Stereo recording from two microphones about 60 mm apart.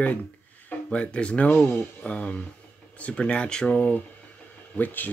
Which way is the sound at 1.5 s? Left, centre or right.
Left.